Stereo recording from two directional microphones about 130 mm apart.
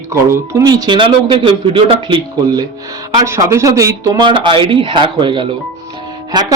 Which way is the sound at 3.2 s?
25° right (ahead or behind).